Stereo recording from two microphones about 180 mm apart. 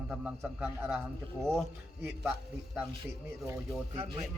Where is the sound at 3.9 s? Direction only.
35° right (ahead or behind).